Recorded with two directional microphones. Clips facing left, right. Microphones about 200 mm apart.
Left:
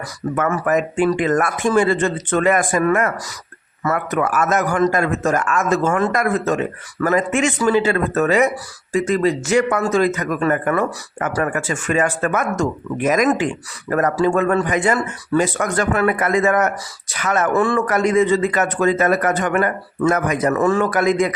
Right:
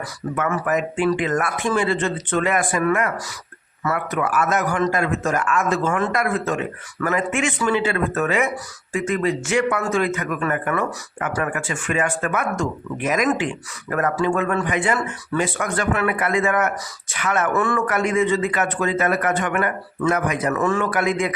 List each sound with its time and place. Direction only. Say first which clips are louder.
0.3 s a man's voice: left 3 dB; 45° left (ahead or behind)